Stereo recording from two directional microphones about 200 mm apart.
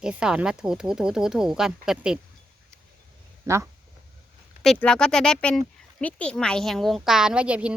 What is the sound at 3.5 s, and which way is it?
Speech, 15° right (ahead or behind).